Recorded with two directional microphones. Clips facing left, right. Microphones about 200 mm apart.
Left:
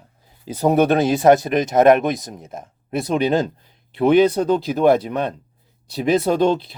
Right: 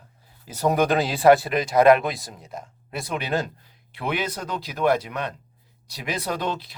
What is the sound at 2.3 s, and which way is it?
Speech, 50° left (ahead or behind).